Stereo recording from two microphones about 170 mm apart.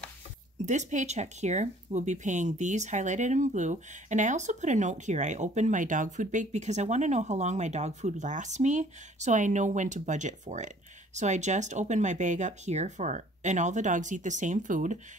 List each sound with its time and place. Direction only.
0.7 s speech: 45° right (ahead or behind)